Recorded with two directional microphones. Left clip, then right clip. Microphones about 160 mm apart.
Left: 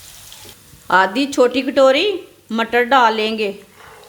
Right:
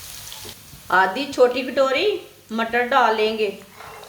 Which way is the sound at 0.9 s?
75° left (ahead or behind).